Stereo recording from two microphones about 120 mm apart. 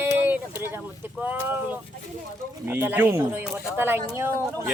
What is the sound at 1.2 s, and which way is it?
Speech, 15° right (ahead or behind).